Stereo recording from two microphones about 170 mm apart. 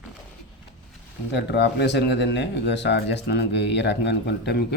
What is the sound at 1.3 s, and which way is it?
Speech, 80° left.